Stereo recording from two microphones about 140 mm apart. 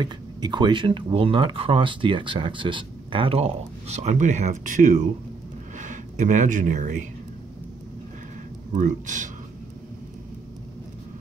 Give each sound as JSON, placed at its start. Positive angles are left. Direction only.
{"t": 0.0, "sound": "speech", "side_deg": -30}
{"t": 8.7, "sound": "speech", "side_deg": -65}